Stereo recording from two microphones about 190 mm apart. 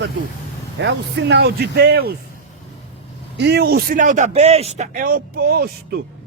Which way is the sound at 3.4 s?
60° right (ahead or behind).